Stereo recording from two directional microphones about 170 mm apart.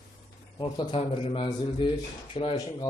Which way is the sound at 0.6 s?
30° left (ahead or behind).